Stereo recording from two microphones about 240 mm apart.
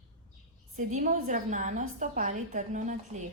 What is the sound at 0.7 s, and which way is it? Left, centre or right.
A woman's voice, right.